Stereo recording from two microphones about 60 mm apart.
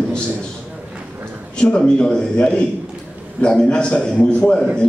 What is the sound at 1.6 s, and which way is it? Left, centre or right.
A man's voice, centre.